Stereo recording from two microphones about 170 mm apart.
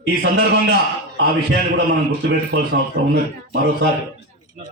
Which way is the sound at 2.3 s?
65° right (ahead or behind).